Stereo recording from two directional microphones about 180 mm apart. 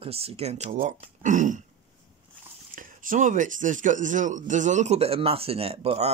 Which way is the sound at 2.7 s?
50° right (ahead or behind).